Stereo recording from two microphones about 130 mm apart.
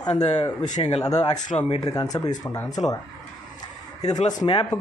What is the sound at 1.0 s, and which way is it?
Speech, 30° left (ahead or behind).